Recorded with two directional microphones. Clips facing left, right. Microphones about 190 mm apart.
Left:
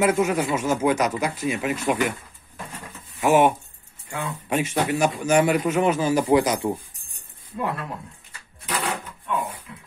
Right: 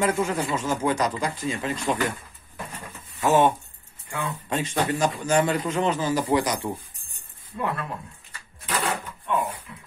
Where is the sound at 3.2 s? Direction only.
10° left (ahead or behind).